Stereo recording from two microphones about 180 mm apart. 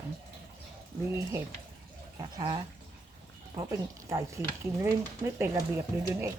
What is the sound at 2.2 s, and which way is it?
Speech, 20° right (ahead or behind).